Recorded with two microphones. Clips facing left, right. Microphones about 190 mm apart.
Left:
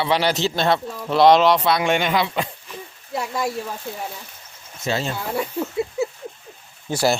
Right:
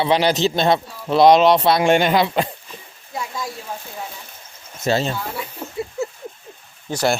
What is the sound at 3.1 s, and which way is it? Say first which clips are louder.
Speech: left 4 dB; 65° left (ahead or behind).